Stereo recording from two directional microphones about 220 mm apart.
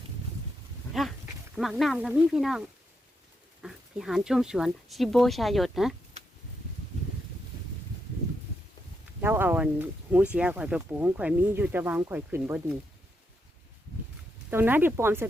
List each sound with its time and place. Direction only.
0.9 s speech: centre (ahead or behind)
9.2 s speech: 10° right (ahead or behind)
14.5 s speech: 10° right (ahead or behind)